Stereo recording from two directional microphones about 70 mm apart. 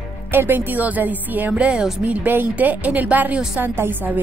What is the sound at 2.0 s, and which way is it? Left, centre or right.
Speech, right.